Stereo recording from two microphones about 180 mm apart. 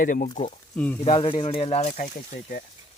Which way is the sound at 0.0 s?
50° left (ahead or behind).